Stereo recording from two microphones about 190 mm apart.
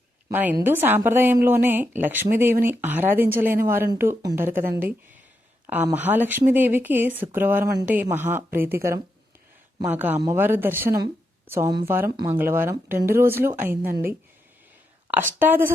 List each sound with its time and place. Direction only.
0.3 s a woman's voice: 10° right (ahead or behind)